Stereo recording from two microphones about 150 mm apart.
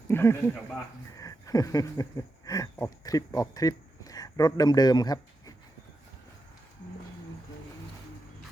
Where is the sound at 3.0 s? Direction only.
25° left (ahead or behind).